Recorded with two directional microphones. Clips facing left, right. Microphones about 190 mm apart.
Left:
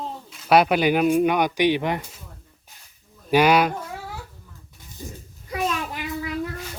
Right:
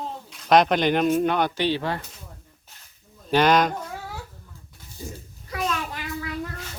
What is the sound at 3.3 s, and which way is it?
Speech, 10° left (ahead or behind).